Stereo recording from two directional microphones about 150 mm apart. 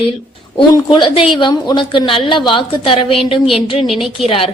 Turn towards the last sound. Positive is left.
turn(degrees=40)  # may be behind; listen again after turning